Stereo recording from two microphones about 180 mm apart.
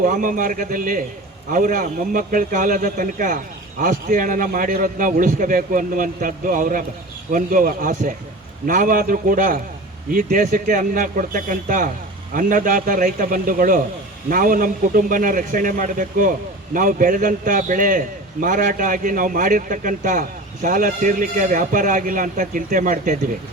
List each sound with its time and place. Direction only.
0.0 s a man's voice: 50° right (ahead or behind)